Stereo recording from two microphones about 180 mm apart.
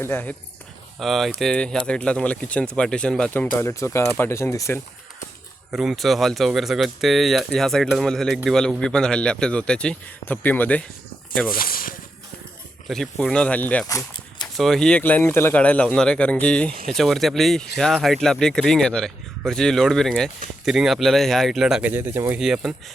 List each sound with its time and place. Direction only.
0.0 s speech: 10° left (ahead or behind)
5.7 s speech: centre (ahead or behind)
11.5 s a sound: 55° left (ahead or behind)
12.9 s speech: centre (ahead or behind)
13.8 s a sound: 20° left (ahead or behind)
14.5 s speech: centre (ahead or behind)